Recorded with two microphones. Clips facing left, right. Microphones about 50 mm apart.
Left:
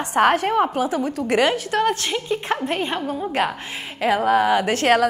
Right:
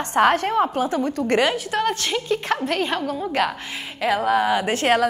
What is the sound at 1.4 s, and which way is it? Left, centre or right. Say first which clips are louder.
Speech: left 2 dB; left.